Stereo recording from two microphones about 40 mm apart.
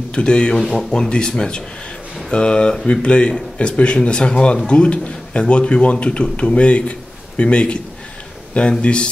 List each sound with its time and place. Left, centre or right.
0.1 s speech: left
0.6 s speech: centre